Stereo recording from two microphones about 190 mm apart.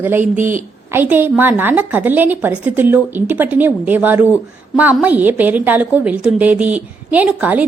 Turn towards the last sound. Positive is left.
turn(degrees=-5)  # may be behind; listen again after turning